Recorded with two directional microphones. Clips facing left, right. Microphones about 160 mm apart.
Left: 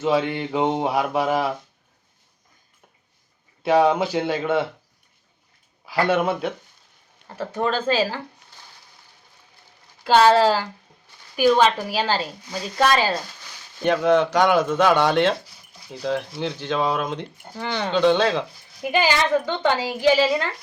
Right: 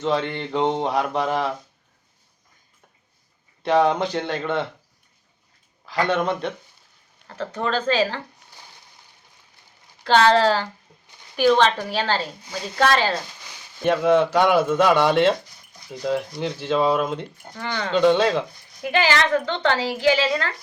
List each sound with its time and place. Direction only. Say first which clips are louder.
0.0 s a woman's voice: left 2 dB; 5° left (ahead or behind)
3.6 s speech: left 1 dB; 5° left (ahead or behind)
5.8 s a woman's voice: left 2 dB; 5° left (ahead or behind)
10.0 s a woman's voice: left 1 dB; 10° left (ahead or behind)
13.8 s speech: even; centre (ahead or behind)
17.5 s a woman's voice: left 2 dB; 20° left (ahead or behind)
17.9 s speech: right 1 dB; centre (ahead or behind)
18.9 s a woman's voice: even; 15° left (ahead or behind)